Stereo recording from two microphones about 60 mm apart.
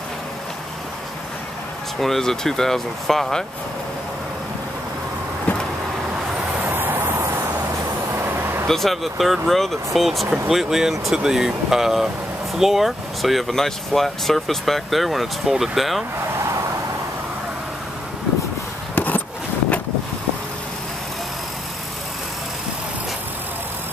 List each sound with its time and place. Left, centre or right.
2.0 s speech: centre
6.7 s vehicle: right
8.6 s speech: centre
18.9 s a sound: left